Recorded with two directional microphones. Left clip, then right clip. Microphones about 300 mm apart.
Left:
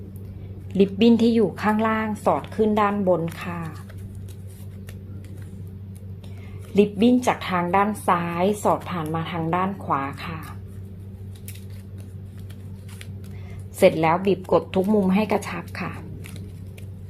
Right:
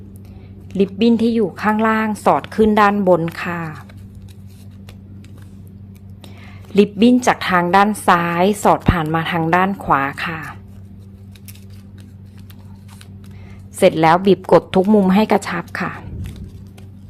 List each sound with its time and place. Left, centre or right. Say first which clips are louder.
0.7 s a woman's voice: right 2 dB; centre
6.7 s a woman's voice: right 5 dB; centre
13.7 s speech: right 5 dB; centre